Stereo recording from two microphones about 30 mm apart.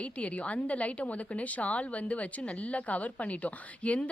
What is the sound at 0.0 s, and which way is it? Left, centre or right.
A woman's voice, left.